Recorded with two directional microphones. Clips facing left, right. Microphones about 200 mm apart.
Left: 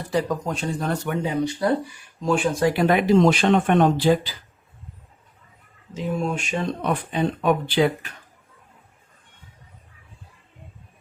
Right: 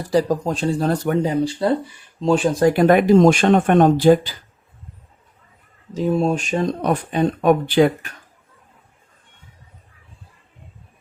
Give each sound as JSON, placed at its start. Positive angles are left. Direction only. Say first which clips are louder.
{"t": 0.1, "sound": "speech", "louder": "right 6 dB", "side_deg": -35}
{"t": 6.0, "sound": "speech", "louder": "right 7 dB", "side_deg": -35}